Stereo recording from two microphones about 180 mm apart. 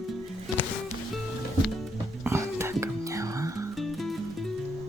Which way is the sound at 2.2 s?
15° right (ahead or behind).